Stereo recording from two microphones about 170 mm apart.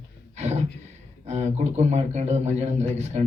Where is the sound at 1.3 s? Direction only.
40° right (ahead or behind).